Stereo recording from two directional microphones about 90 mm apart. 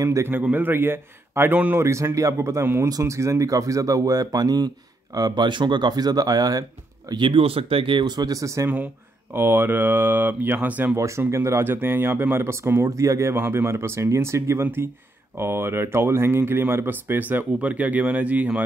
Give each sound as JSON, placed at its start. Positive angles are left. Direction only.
{"t": 0.0, "sound": "speech", "side_deg": -35}
{"t": 0.3, "sound": "speech", "side_deg": -20}
{"t": 1.8, "sound": "speech", "side_deg": -30}
{"t": 7.1, "sound": "speech", "side_deg": -65}
{"t": 9.3, "sound": "speech", "side_deg": -25}
{"t": 11.0, "sound": "speech", "side_deg": -30}